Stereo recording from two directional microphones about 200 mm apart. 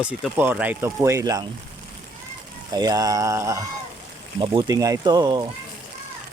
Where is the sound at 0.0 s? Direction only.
5° right (ahead or behind).